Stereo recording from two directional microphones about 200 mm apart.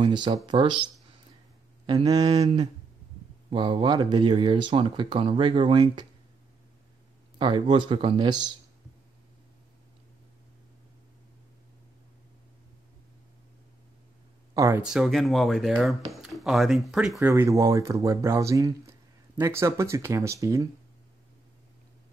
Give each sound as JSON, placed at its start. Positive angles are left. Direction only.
{"t": 0.0, "sound": "speech", "side_deg": -25}
{"t": 1.9, "sound": "speech", "side_deg": -20}
{"t": 7.3, "sound": "speech", "side_deg": -25}
{"t": 14.5, "sound": "a sound", "side_deg": -15}
{"t": 14.8, "sound": "speech", "side_deg": -5}
{"t": 17.3, "sound": "speech", "side_deg": -15}